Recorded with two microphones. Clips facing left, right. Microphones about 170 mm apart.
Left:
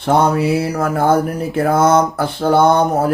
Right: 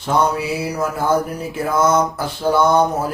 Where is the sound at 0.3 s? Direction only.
60° left (ahead or behind).